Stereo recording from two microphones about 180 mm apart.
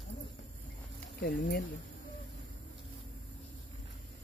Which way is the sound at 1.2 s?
60° left (ahead or behind).